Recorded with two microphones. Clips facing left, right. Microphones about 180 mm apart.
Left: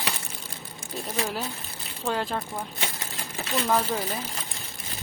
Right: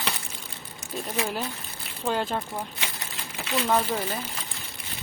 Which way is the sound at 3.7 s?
Centre (ahead or behind).